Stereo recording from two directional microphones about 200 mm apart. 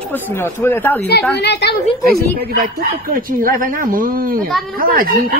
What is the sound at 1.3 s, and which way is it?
Speech, 55° left (ahead or behind).